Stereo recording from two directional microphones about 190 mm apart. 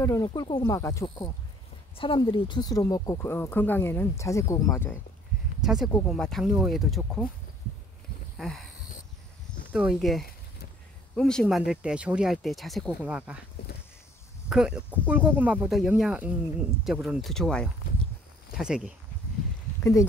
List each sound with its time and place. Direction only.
0.0 s speech: 15° left (ahead or behind)
5.6 s speech: centre (ahead or behind)
8.4 s a sound: centre (ahead or behind)
9.7 s speech: 5° right (ahead or behind)
14.5 s speech: 5° right (ahead or behind)
19.8 s speech: 15° left (ahead or behind)